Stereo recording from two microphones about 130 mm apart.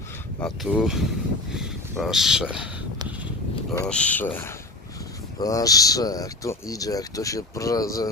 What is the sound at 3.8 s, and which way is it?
Speech, 10° left (ahead or behind).